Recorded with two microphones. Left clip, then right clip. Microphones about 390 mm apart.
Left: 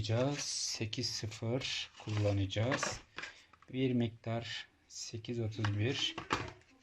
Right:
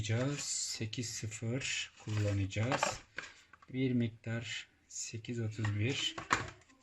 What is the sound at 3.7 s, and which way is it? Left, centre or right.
Speech, centre.